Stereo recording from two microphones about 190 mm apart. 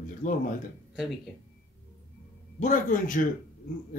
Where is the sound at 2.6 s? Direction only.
45° left (ahead or behind).